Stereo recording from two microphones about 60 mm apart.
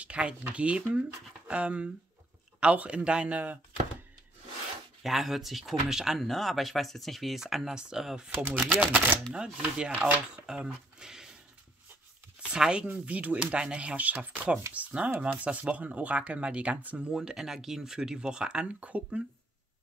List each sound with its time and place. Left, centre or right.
0.0 s speech: centre
5.0 s speech: centre
12.4 s speech: centre
17.1 s speech: centre